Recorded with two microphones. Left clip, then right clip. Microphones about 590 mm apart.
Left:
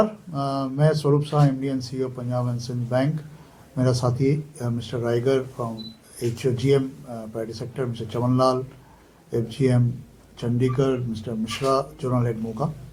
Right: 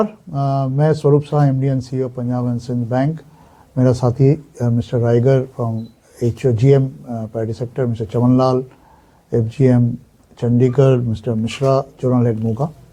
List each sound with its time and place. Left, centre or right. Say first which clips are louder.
0.0 s speech: right 3 dB; right